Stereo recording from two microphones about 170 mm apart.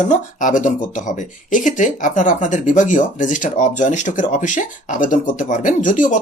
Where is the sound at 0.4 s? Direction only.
50° left (ahead or behind).